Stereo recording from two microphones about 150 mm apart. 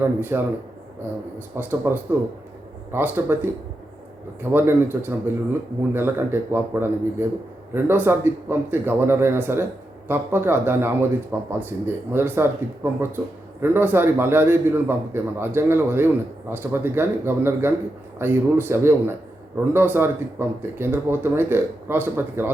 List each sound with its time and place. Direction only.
0.0 s speech: 15° right (ahead or behind)
1.5 s speech: 15° right (ahead or behind)
4.5 s speech: 15° right (ahead or behind)